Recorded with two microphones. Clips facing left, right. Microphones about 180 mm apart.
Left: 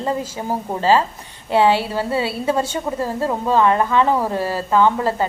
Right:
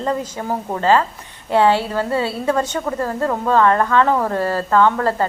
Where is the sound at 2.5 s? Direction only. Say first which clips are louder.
Right 1 dB; 10° left (ahead or behind).